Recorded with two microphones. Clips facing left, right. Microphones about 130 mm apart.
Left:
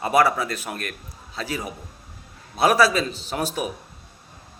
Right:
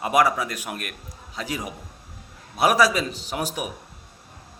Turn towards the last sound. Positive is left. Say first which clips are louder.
# left 2 dB
turn(degrees=-15)  # may be behind; listen again after turning